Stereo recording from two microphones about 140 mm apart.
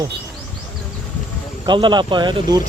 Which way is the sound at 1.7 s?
35° right (ahead or behind).